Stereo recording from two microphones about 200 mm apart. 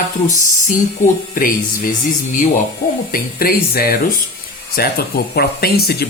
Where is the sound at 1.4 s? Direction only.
45° left (ahead or behind).